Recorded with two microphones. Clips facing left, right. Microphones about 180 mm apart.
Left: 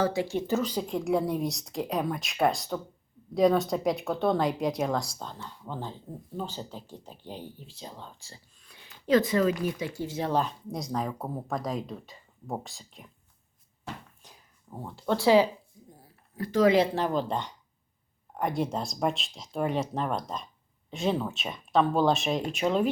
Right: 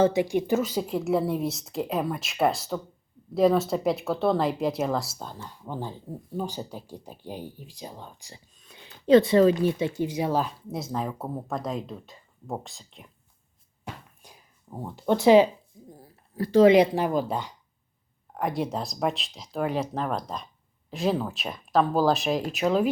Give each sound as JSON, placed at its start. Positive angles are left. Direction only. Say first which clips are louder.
{"t": 0.0, "sound": "speech", "louder": "right 5 dB", "side_deg": -20}
{"t": 13.8, "sound": "a sound", "louder": "even", "side_deg": -10}
{"t": 16.3, "sound": "speech", "louder": "right 6 dB", "side_deg": -35}
{"t": 16.7, "sound": "speech", "louder": "right 4 dB", "side_deg": -15}